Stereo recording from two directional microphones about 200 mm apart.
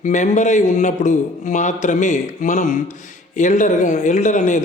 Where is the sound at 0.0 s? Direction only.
35° left (ahead or behind).